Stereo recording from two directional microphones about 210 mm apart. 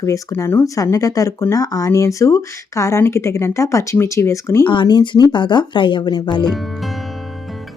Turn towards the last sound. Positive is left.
turn(degrees=20)  # may be behind; listen again after turning